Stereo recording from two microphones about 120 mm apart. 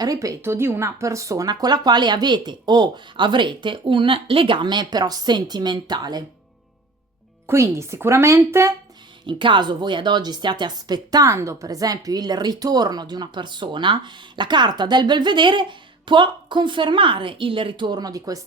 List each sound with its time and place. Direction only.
0.0 s speech: 30° right (ahead or behind)
7.4 s speech: 25° right (ahead or behind)
9.2 s speech: 40° right (ahead or behind)